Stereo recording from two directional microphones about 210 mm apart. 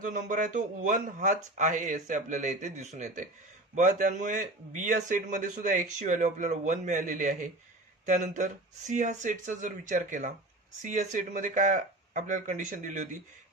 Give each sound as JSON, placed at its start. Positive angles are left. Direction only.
{"t": 0.0, "sound": "a man's voice", "side_deg": -40}